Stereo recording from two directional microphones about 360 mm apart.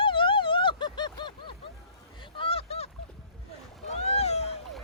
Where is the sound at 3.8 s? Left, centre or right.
Centre.